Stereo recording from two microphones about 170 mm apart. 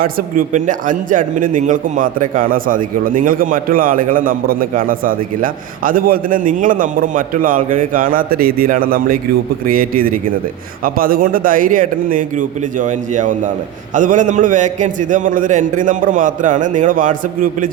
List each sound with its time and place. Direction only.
0.0 s a man's voice: 55° right (ahead or behind)